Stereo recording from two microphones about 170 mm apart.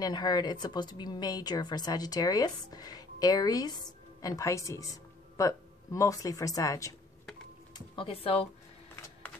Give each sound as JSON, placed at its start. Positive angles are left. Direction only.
{"t": 0.0, "sound": "a woman's voice", "side_deg": 25}
{"t": 7.7, "sound": "speech", "side_deg": 30}